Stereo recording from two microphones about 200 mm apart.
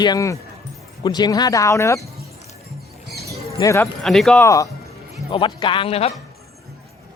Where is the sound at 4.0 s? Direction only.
Centre (ahead or behind).